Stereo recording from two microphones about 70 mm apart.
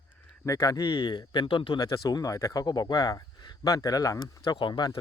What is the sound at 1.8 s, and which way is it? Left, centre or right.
Speech, left.